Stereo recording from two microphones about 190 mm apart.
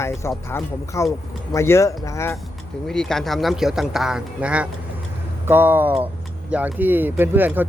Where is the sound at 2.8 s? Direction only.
5° left (ahead or behind).